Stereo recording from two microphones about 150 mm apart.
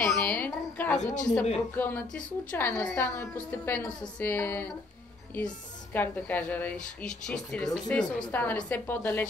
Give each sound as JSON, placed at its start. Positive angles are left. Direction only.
{"t": 0.0, "sound": "a woman's voice", "side_deg": 10}
{"t": 1.0, "sound": "speech", "side_deg": 55}
{"t": 1.8, "sound": "a woman's voice", "side_deg": 15}
{"t": 5.9, "sound": "a woman's voice", "side_deg": 10}